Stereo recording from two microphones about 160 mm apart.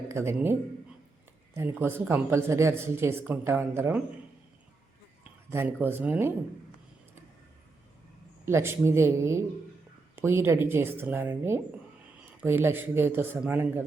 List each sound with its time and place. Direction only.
0.1 s speech: 15° right (ahead or behind)
1.5 s speech: 15° right (ahead or behind)
5.5 s speech: 15° right (ahead or behind)
8.4 s speech: 15° right (ahead or behind)